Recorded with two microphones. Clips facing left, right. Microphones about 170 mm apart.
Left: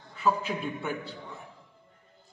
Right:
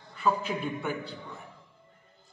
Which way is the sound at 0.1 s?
Centre (ahead or behind).